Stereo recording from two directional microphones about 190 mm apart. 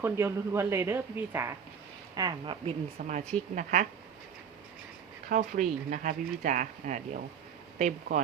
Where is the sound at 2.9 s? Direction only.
40° right (ahead or behind).